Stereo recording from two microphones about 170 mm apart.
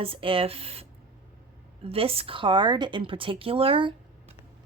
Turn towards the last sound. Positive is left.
turn(degrees=-30)  # may be behind; listen again after turning